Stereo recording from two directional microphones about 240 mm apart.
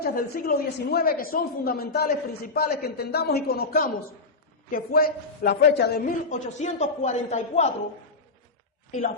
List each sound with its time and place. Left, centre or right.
0.0 s speech: left